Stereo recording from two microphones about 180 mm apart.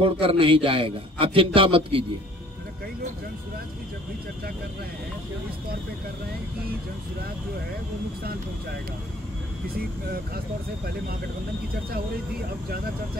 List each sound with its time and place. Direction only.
0.0 s a man's voice: 30° right (ahead or behind)